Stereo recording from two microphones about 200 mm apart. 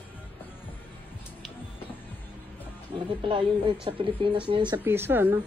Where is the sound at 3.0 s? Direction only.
25° right (ahead or behind).